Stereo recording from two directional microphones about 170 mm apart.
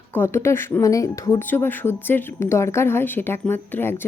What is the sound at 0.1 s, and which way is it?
Speech, 15° left (ahead or behind).